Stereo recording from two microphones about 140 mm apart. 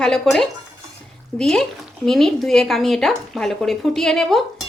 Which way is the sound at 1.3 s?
5° left (ahead or behind).